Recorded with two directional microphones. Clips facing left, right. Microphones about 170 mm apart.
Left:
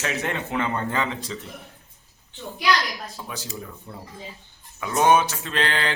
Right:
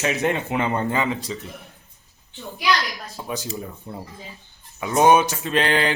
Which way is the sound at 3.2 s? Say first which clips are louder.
Right 5 dB; 20° right (ahead or behind).